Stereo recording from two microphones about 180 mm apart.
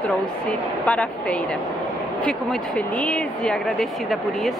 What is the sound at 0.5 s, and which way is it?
Speech, 5° left (ahead or behind).